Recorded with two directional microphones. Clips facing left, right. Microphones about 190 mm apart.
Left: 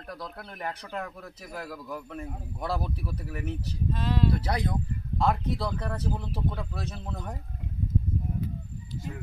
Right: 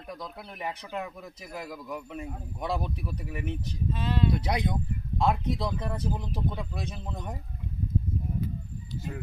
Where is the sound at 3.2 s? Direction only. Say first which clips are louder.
Even; 15° right (ahead or behind).